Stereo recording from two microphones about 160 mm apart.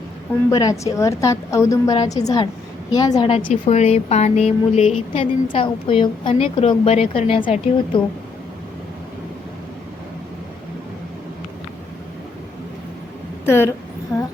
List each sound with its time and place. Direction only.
0.5 s a woman's voice: 20° left (ahead or behind)
3.2 s speech: 35° left (ahead or behind)
13.4 s speech: 15° left (ahead or behind)
14.1 s a sound: 10° left (ahead or behind)